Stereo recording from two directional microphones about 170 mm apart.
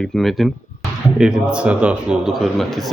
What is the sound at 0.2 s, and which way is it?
A man's voice, centre (ahead or behind).